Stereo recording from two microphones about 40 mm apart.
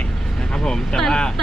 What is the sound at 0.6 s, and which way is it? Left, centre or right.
Speech, centre.